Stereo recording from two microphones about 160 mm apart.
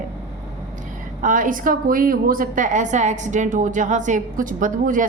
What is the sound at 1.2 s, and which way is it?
A woman's voice, 55° right (ahead or behind).